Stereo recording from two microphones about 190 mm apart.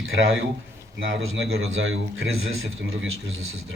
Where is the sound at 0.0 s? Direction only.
90° right.